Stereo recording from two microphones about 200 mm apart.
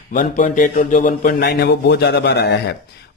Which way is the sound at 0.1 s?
40° left (ahead or behind).